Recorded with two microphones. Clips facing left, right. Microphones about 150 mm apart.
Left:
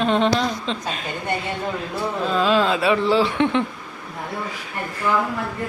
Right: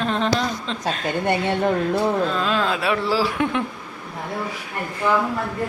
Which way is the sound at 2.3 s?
Centre (ahead or behind).